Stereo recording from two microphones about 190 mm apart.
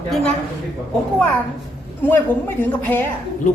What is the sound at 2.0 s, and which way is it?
A woman's voice, 10° left (ahead or behind).